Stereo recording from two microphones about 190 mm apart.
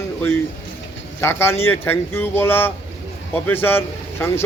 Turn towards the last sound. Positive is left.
turn(degrees=10)  # may be behind; listen again after turning